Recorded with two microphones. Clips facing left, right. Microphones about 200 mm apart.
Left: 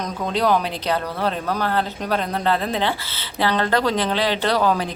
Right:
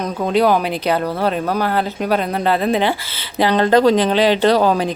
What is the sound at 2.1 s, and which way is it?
Speech, 10° right (ahead or behind).